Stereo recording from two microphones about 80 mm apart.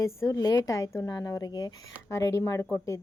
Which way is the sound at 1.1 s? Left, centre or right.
Left.